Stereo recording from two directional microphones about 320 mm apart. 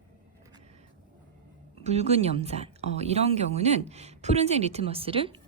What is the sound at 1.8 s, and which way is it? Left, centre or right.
A woman's voice, centre.